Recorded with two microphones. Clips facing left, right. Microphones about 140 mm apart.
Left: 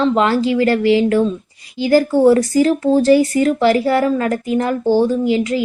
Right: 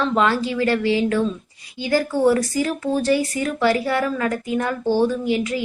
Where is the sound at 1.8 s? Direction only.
30° left (ahead or behind).